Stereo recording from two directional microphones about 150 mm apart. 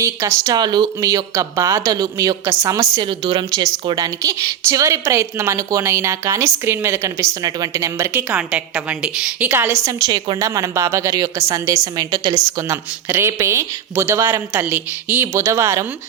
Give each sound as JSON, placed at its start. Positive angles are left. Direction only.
{"t": 0.0, "sound": "a woman's voice", "side_deg": -20}
{"t": 10.1, "sound": "a woman's voice", "side_deg": -30}